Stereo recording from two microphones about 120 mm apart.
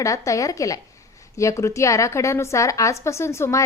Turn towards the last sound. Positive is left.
turn(degrees=25)  # may be behind; listen again after turning